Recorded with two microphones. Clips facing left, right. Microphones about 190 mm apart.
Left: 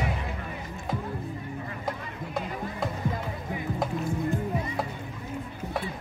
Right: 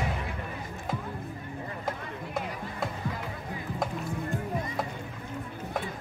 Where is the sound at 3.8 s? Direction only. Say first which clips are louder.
Left 3 dB; 5° left (ahead or behind).